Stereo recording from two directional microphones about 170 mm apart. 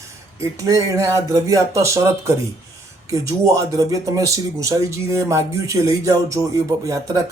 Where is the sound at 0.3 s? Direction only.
20° right (ahead or behind).